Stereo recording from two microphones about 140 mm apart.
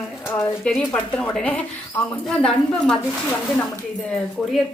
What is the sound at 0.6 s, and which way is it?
Speech, 5° left (ahead or behind).